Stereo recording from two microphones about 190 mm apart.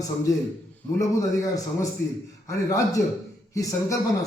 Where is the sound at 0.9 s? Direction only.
15° left (ahead or behind).